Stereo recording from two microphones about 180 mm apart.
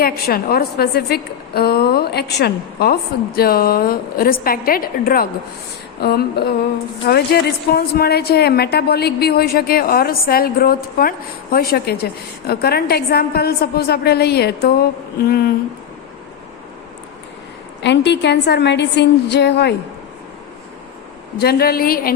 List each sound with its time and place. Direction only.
0.0 s a woman's voice: 55° left (ahead or behind)
17.8 s a woman's voice: 75° left (ahead or behind)
21.3 s a woman's voice: 60° left (ahead or behind)